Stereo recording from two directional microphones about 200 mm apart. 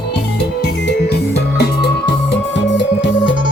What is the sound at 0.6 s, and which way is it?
Music, 55° left (ahead or behind).